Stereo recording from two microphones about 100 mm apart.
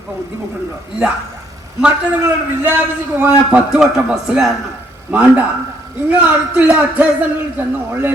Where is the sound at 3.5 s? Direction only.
5° right (ahead or behind).